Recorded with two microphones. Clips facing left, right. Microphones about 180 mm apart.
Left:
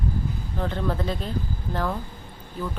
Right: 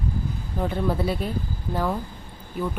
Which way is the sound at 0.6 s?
10° right (ahead or behind).